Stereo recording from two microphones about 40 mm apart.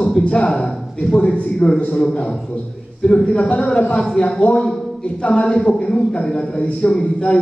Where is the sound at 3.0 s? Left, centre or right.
Left.